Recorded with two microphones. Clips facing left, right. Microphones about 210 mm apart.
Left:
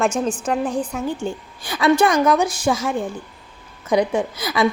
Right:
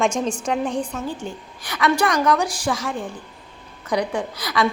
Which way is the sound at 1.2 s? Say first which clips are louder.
Left 5 dB; 30° left (ahead or behind).